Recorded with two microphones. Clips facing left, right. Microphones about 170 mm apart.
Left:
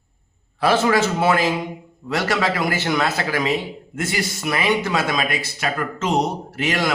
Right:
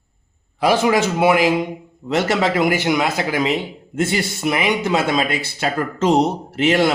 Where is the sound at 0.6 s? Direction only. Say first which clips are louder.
Right 2 dB; 15° right (ahead or behind).